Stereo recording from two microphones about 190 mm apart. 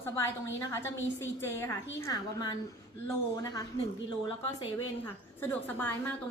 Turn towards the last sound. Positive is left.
turn(degrees=10)  # may be behind; listen again after turning